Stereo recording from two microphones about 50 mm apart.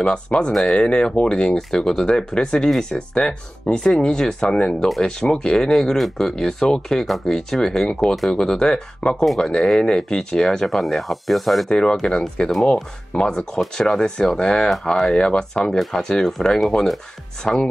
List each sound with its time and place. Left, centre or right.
0.0 s speech: centre
0.5 s speech: centre
0.7 s speech: left; by 11.7 s centre
11.7 s speech: centre